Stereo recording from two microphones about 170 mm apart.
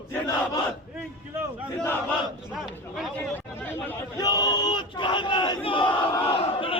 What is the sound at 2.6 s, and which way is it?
Speech, centre (ahead or behind).